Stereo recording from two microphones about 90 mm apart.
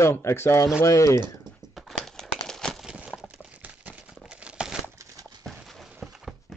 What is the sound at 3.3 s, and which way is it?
Crumpling, 10° right (ahead or behind).